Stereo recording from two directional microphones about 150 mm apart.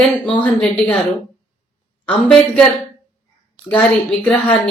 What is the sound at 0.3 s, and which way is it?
Speech, 10° left (ahead or behind).